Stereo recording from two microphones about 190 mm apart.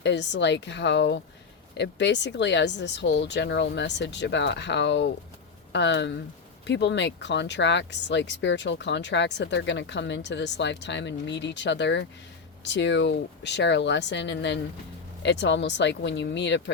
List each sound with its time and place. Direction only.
0.0 s speech: 65° left (ahead or behind)